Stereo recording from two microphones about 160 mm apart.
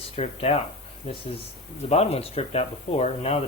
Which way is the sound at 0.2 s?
40° left (ahead or behind).